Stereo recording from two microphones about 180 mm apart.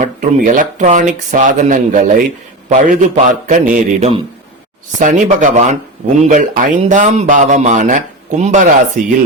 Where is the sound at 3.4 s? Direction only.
45° right (ahead or behind).